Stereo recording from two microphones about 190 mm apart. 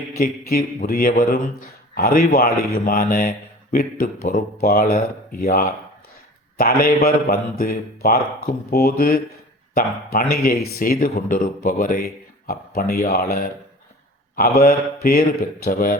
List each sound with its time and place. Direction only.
0.2 s speech: 50° left (ahead or behind)
14.3 s speech: 50° left (ahead or behind)